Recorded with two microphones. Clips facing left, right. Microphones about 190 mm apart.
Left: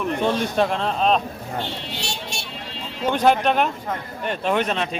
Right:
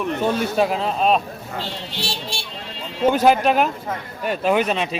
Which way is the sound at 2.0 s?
35° right (ahead or behind).